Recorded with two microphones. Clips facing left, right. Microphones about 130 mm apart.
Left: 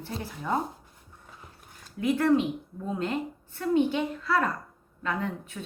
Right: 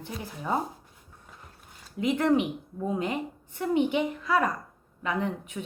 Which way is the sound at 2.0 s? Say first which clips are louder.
Left 1 dB; 20° right (ahead or behind).